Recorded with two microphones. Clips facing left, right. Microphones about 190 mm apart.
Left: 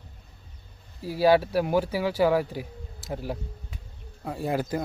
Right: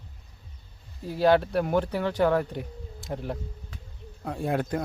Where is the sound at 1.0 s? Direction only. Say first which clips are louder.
Left 1 dB; 5° left (ahead or behind).